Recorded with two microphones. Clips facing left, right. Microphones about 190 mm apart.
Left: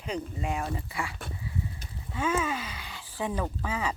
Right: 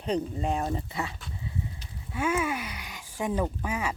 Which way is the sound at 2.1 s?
10° right (ahead or behind).